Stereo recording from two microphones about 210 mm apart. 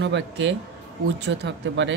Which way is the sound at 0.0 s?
55° right (ahead or behind).